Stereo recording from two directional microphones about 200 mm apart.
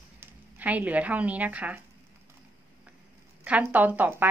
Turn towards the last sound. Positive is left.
turn(degrees=-10)  # may be behind; listen again after turning